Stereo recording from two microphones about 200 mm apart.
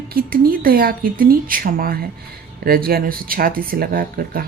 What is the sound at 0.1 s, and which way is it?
Speech, 50° right (ahead or behind).